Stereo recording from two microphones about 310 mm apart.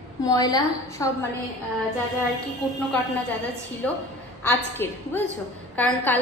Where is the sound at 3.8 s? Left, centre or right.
Centre.